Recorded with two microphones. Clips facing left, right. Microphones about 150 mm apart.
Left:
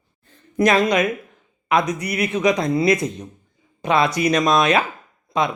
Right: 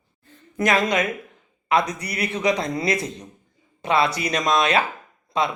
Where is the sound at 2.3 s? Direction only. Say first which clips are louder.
Left 3 dB; 15° left (ahead or behind).